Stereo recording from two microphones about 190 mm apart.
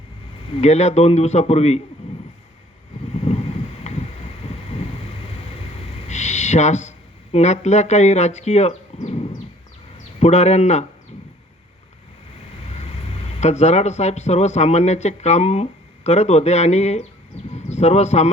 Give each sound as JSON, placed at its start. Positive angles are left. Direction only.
{"t": 0.5, "sound": "speech", "side_deg": 35}
{"t": 3.2, "sound": "a sound", "side_deg": 35}
{"t": 4.4, "sound": "thunder", "side_deg": 30}
{"t": 6.1, "sound": "a sound", "side_deg": 35}
{"t": 7.3, "sound": "speech", "side_deg": 35}
{"t": 13.4, "sound": "speech", "side_deg": 35}